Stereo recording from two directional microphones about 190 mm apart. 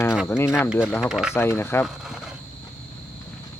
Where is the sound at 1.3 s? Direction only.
15° left (ahead or behind).